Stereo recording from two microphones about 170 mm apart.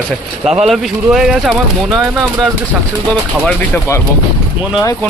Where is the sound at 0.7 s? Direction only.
Centre (ahead or behind).